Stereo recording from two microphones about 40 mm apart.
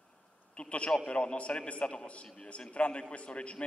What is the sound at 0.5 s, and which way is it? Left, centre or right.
A man's voice, left.